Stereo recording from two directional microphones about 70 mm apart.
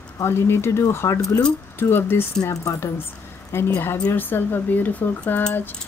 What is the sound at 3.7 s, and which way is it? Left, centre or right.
Speech, left.